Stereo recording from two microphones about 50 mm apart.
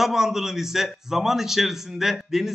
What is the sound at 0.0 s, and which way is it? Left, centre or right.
A man's voice, centre.